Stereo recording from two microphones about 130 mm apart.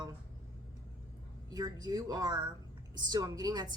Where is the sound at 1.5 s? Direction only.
30° right (ahead or behind).